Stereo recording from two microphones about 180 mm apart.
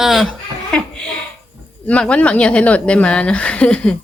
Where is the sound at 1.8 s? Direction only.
5° left (ahead or behind).